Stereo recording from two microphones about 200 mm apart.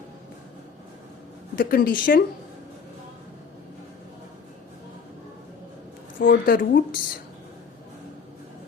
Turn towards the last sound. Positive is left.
turn(degrees=45)  # may be behind; listen again after turning